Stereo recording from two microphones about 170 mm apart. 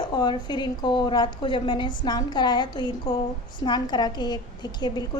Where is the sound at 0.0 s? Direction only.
25° left (ahead or behind).